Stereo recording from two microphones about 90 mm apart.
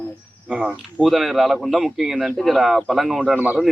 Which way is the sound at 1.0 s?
Centre (ahead or behind).